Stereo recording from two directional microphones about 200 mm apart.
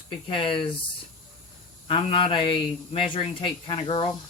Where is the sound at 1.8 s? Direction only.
25° left (ahead or behind).